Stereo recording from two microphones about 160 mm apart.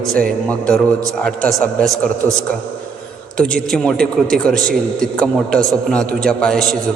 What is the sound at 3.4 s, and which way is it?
A man's voice, 5° left (ahead or behind).